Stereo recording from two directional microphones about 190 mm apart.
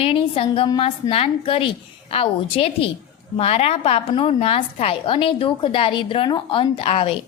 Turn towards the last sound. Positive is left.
turn(degrees=30)  # may be behind; listen again after turning